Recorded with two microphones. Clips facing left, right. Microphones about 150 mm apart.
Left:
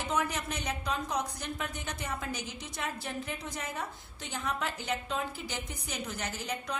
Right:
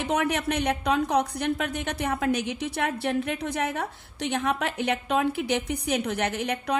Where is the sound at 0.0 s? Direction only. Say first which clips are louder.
Right 7 dB; 65° right (ahead or behind).